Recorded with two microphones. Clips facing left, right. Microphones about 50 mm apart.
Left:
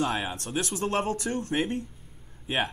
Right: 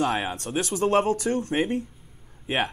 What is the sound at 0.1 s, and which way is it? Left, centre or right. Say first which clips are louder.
Speech: right 3 dB; centre.